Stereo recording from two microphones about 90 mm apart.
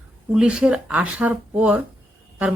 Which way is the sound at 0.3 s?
10° right (ahead or behind).